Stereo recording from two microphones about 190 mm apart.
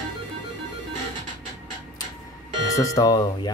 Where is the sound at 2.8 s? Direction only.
20° left (ahead or behind).